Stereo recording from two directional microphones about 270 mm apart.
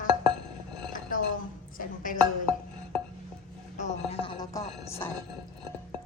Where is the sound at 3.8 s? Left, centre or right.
Centre.